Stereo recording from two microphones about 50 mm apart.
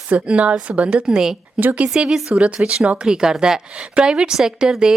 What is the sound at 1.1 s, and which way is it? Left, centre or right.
Speech, centre.